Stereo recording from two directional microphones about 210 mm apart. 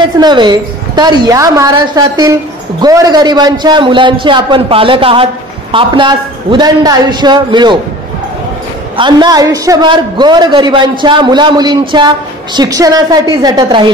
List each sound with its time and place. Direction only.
0.2 s a man's voice: 20° right (ahead or behind)
8.9 s a man's voice: 20° right (ahead or behind)